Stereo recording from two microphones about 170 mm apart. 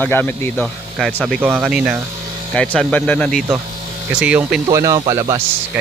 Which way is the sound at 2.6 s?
5° left (ahead or behind).